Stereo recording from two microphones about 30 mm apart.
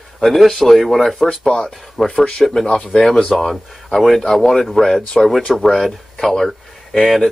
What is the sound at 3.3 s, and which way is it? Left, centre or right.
Speech, centre.